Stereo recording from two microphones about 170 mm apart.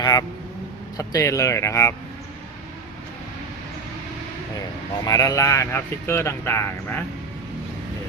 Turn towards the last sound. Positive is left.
turn(degrees=10)  # may be behind; listen again after turning